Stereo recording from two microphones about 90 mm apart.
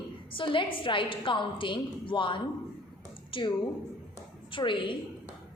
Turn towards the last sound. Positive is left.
turn(degrees=65)  # may be behind; listen again after turning